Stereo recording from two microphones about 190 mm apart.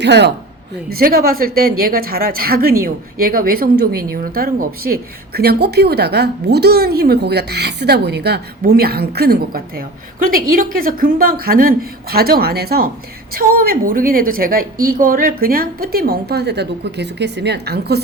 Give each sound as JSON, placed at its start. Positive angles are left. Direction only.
{"t": 0.0, "sound": "a woman's voice", "side_deg": -65}
{"t": 0.9, "sound": "a woman's voice", "side_deg": -50}